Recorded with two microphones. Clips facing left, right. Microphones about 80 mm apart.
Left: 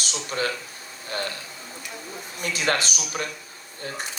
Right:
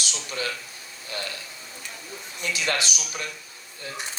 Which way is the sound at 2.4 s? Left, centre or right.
Left.